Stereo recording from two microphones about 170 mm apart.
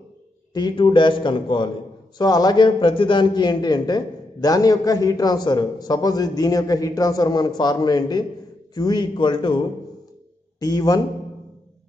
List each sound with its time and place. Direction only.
0.5 s a man's voice: 25° left (ahead or behind)